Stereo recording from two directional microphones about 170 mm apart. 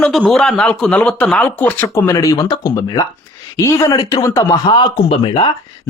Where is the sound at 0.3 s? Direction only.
5° left (ahead or behind).